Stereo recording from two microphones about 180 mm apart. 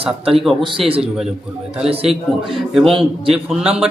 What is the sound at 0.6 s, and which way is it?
Speech, 30° right (ahead or behind).